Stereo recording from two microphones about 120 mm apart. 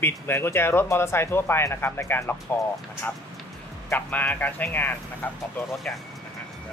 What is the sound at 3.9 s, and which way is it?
Speech, 15° left (ahead or behind).